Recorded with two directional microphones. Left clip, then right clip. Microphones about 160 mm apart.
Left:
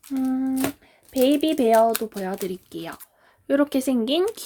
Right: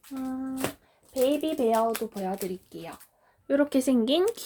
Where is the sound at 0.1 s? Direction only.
75° left (ahead or behind).